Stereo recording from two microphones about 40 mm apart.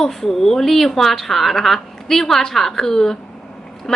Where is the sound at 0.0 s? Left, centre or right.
Centre.